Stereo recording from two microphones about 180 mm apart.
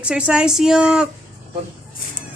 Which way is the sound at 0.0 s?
5° right (ahead or behind).